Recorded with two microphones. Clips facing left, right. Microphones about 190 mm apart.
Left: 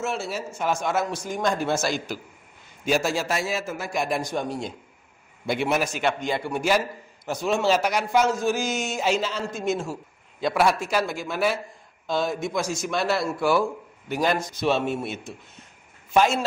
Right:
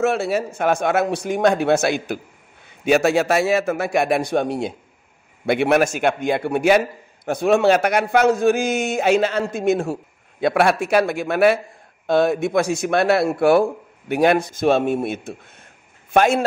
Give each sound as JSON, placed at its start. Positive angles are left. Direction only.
{"t": 0.0, "sound": "a man's voice", "side_deg": -60}